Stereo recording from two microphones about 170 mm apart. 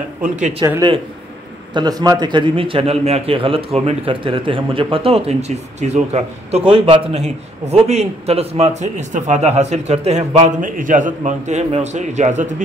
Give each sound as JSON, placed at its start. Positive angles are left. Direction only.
{"t": 0.2, "sound": "speech", "side_deg": -45}
{"t": 1.7, "sound": "a man's voice", "side_deg": -25}